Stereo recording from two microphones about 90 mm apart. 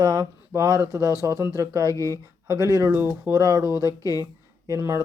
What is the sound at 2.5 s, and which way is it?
Speech, 35° right (ahead or behind).